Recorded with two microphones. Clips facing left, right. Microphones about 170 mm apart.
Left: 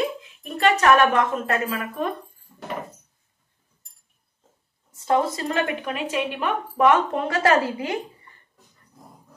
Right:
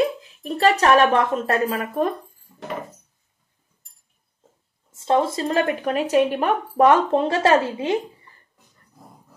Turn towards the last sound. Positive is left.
turn(degrees=-25)  # may be behind; listen again after turning